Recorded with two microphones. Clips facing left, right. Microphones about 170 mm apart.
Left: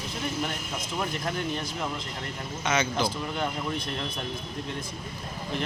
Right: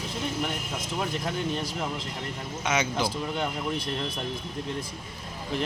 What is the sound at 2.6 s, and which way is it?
Speech, 15° right (ahead or behind).